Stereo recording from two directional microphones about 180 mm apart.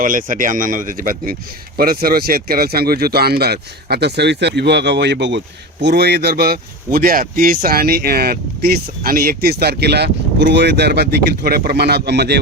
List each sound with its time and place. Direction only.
0.0 s speech: 50° right (ahead or behind); by 12.4 s 65° right (ahead or behind)